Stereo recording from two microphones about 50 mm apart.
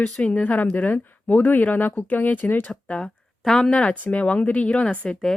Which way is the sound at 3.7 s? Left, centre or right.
Left.